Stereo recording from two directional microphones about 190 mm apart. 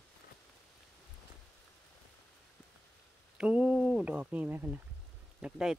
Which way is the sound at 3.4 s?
5° right (ahead or behind).